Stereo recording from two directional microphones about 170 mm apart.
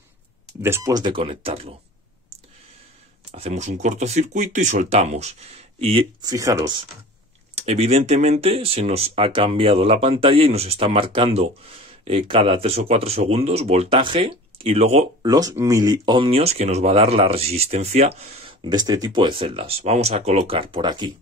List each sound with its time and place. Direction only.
0.6 s speech: 15° right (ahead or behind); by 1.7 s 35° right (ahead or behind)
3.3 s speech: 35° right (ahead or behind)
6.2 s speech: 20° right (ahead or behind)
7.6 s speech: 40° right (ahead or behind)
15.2 s speech: 20° right (ahead or behind)